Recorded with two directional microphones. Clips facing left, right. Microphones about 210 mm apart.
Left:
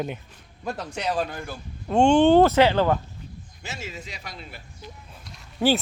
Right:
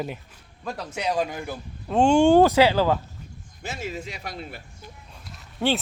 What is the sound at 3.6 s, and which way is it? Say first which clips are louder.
Speech: right 5 dB; 55° right (ahead or behind).